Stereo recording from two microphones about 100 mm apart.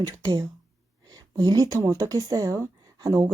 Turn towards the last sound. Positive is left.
turn(degrees=-35)  # may be behind; listen again after turning